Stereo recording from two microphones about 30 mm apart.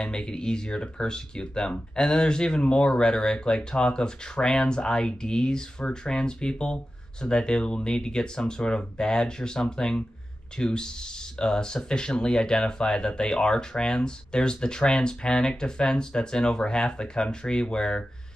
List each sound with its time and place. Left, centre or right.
0.0 s speech: left